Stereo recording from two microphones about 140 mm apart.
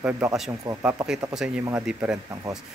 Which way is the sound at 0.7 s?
30° right (ahead or behind).